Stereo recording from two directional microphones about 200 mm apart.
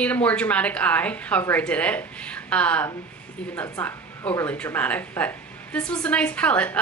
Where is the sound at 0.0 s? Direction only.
5° left (ahead or behind).